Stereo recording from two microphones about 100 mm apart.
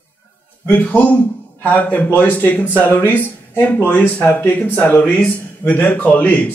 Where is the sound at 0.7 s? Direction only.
15° left (ahead or behind).